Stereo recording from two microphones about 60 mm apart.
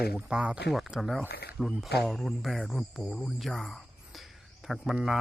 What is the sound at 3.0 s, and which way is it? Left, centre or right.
Speech, centre.